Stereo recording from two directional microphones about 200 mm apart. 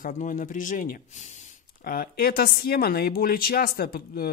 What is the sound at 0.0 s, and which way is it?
Speech, 40° left (ahead or behind).